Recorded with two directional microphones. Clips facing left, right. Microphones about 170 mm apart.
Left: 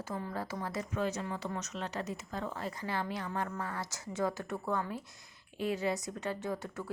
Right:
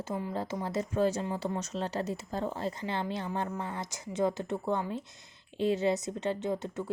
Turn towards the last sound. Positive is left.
turn(degrees=-20)  # may be behind; listen again after turning